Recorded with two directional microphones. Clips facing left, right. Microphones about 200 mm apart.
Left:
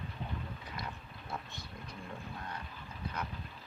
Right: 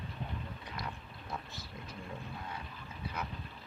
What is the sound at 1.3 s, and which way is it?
Vehicle, 5° right (ahead or behind).